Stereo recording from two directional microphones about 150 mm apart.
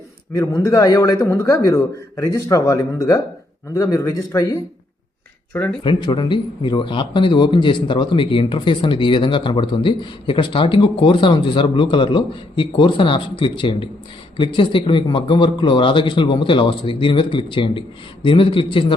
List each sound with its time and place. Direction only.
0.3 s a man's voice: 20° left (ahead or behind)
5.5 s speech: 10° left (ahead or behind)
5.8 s speech: 30° left (ahead or behind)